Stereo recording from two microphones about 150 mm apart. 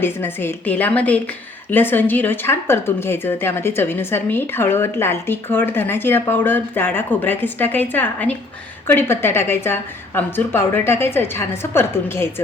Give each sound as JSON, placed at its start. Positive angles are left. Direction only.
{"t": 0.0, "sound": "speech", "side_deg": 15}